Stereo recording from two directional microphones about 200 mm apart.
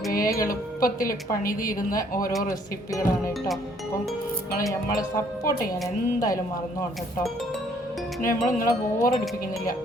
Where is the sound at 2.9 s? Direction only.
15° left (ahead or behind).